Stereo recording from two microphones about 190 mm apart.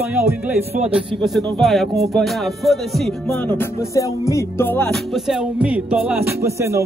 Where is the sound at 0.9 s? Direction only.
5° right (ahead or behind).